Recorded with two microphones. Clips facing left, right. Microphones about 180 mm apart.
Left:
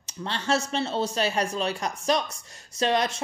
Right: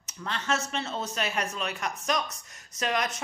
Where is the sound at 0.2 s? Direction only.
30° left (ahead or behind).